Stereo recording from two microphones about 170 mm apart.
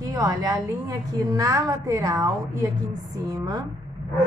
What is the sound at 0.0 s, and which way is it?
A woman's voice, 25° right (ahead or behind).